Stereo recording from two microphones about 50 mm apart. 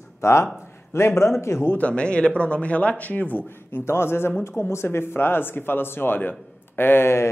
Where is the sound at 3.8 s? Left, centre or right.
Left.